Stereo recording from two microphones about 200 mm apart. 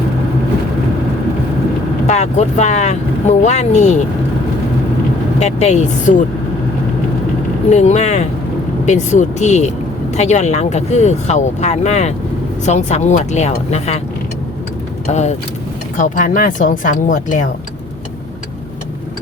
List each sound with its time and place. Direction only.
2.0 s speech: 35° left (ahead or behind)
5.4 s speech: 35° left (ahead or behind)
7.7 s speech: 35° left (ahead or behind)
15.0 s speech: 35° left (ahead or behind)